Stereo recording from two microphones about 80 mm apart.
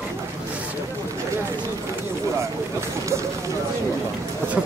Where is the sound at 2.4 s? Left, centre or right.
Right.